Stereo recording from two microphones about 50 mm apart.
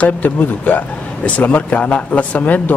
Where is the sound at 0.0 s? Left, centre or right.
Left.